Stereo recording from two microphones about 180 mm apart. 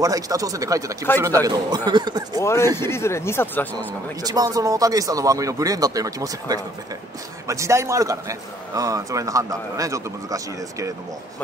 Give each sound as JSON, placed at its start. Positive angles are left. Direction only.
{"t": 0.0, "sound": "speech", "side_deg": -20}
{"t": 2.4, "sound": "speech", "side_deg": 15}
{"t": 3.7, "sound": "a man's voice", "side_deg": -20}